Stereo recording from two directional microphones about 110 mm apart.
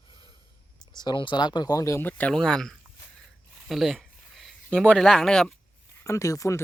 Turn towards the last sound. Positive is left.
turn(degrees=30)  # may be behind; listen again after turning